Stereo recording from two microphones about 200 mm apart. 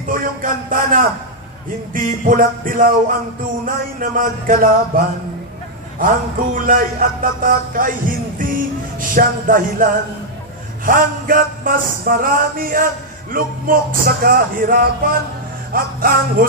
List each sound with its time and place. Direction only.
0.1 s speech: 40° right (ahead or behind)
9.1 s speech: 45° right (ahead or behind)
10.9 s speech: 45° right (ahead or behind)